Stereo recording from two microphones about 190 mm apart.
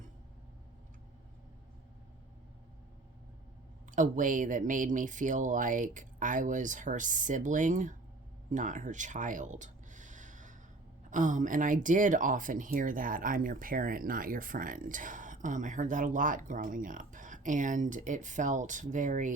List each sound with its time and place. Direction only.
3.9 s speech: 40° right (ahead or behind)
8.4 s a sound: 40° right (ahead or behind)
11.1 s speech: 40° right (ahead or behind)